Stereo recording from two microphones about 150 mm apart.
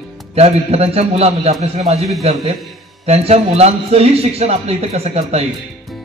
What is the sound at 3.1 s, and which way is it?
A man's voice, 45° right (ahead or behind).